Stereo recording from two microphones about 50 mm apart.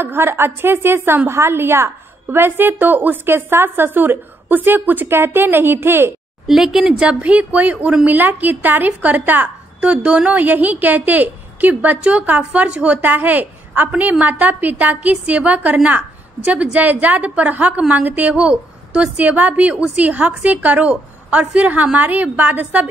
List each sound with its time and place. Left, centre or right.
0.0 s a woman's voice: right
6.4 s speech: centre
7.2 s a woman's voice: right